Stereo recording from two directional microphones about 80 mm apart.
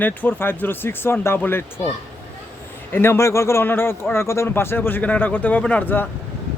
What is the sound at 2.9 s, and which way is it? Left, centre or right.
A man's voice, left.